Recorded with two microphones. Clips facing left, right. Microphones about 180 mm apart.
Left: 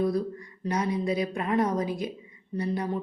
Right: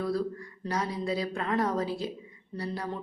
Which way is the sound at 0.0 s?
20° left (ahead or behind).